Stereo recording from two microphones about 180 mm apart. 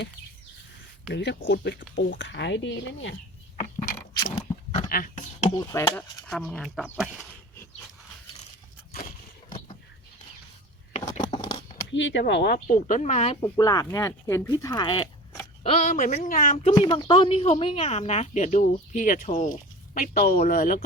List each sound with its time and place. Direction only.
1.1 s speech: 75° left (ahead or behind); by 3.2 s 90° left
4.2 s a sound: 30° left (ahead or behind)
4.9 s speech: 50° left (ahead or behind)
5.5 s speech: 15° left (ahead or behind); by 7.2 s 5° right (ahead or behind)
8.9 s a sound: 50° left (ahead or behind)
10.9 s a sound: 40° left (ahead or behind)
11.2 s a sound: 25° left (ahead or behind)
11.9 s speech: 90° left
12.2 s speech: 65° left (ahead or behind)
12.6 s speech: 45° left (ahead or behind)
13.4 s speech: 20° left (ahead or behind)
15.7 s speech: 40° left (ahead or behind)
16.7 s speech: 25° left (ahead or behind); by 20.7 s 50° left (ahead or behind)